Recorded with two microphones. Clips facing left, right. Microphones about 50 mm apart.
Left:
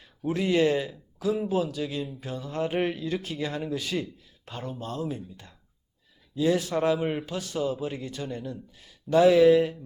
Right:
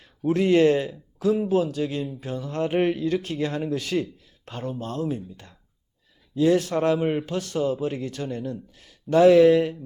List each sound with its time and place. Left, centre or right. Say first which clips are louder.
0.3 s speech: right 5 dB; right